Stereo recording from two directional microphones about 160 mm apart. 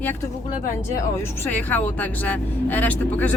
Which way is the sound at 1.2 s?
10° left (ahead or behind).